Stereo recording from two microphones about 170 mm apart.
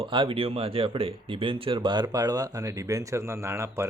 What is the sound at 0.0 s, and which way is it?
Speech, 30° right (ahead or behind).